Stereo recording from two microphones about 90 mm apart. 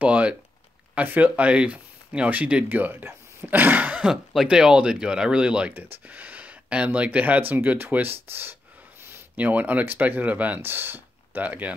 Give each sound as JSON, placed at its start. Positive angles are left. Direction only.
{"t": 0.0, "sound": "speech", "side_deg": -15}